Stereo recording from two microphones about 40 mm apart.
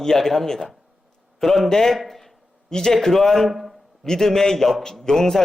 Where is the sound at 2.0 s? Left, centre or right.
Centre.